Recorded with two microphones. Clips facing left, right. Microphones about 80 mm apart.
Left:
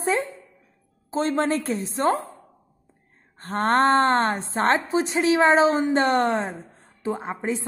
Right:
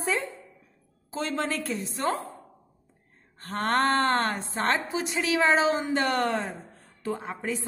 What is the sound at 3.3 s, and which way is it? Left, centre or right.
A woman's voice, left.